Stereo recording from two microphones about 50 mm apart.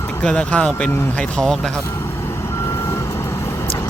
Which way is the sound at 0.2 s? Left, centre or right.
Left.